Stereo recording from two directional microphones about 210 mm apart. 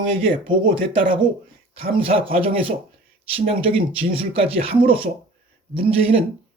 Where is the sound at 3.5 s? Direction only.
25° right (ahead or behind).